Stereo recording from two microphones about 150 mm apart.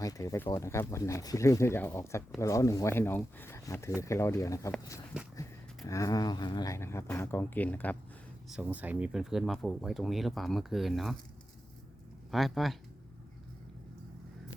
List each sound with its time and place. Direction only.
0.0 s speech: 25° left (ahead or behind)
8.4 s speech: 10° right (ahead or behind)
12.3 s speech: centre (ahead or behind)